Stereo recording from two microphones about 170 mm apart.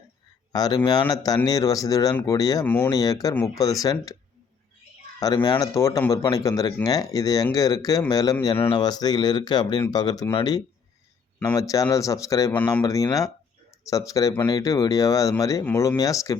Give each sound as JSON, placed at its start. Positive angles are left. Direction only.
{"t": 0.5, "sound": "speech", "side_deg": 25}
{"t": 2.6, "sound": "speech", "side_deg": 10}
{"t": 2.9, "sound": "speech", "side_deg": 20}
{"t": 5.2, "sound": "speech", "side_deg": 25}